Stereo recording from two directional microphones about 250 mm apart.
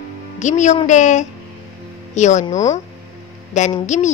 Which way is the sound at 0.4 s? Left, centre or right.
Left.